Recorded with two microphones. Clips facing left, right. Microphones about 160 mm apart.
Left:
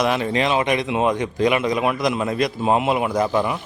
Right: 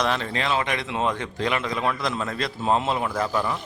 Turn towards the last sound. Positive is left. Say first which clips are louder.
# left 5 dB
turn(degrees=15)  # may be behind; listen again after turning